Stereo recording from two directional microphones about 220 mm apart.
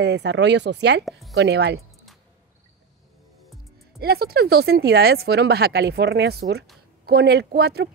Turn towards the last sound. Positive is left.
turn(degrees=-45)  # may be behind; listen again after turning